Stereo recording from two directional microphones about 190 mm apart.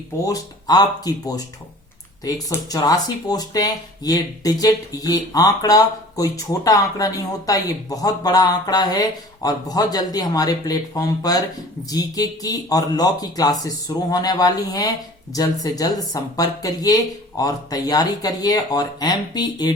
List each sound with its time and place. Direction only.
0.3 s speech: 20° left (ahead or behind)